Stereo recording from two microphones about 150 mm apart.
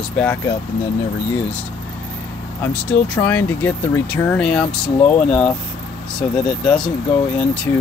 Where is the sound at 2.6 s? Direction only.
10° left (ahead or behind).